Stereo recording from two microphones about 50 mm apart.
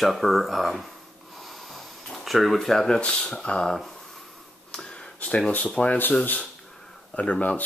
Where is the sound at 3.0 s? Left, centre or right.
Left.